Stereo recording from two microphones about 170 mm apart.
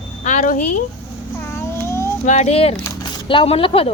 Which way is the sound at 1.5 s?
15° left (ahead or behind).